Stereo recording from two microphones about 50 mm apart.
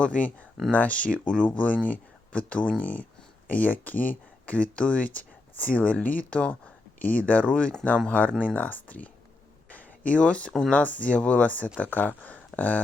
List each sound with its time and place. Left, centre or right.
0.0 s speech: left
9.6 s a sound: left
10.7 s speech: left